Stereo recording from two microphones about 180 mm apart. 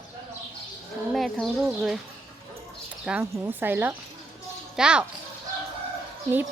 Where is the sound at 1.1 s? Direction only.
Centre (ahead or behind).